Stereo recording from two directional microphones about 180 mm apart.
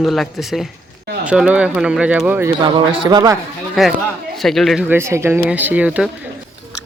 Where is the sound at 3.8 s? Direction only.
Centre (ahead or behind).